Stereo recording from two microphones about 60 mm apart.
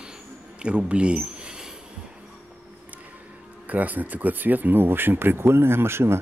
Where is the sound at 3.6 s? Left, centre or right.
Right.